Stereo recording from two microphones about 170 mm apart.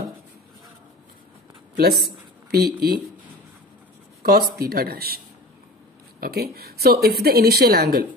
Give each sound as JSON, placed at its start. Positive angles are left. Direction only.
{"t": 1.8, "sound": "a woman's voice", "side_deg": -70}
{"t": 4.2, "sound": "speech", "side_deg": -65}
{"t": 6.2, "sound": "a woman's voice", "side_deg": -65}